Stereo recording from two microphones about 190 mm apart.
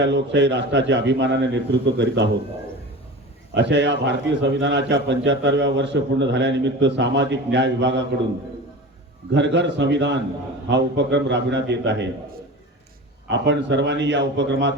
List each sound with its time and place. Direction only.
0.0 s a man's voice: 65° right (ahead or behind)
3.5 s a man's voice: 65° right (ahead or behind)
9.3 s a man's voice: 70° right (ahead or behind)
13.2 s a man's voice: 70° right (ahead or behind)